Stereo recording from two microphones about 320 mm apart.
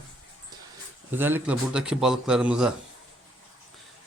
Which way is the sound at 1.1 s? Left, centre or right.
Centre.